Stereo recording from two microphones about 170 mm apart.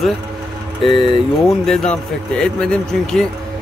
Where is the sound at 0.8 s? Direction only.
30° left (ahead or behind).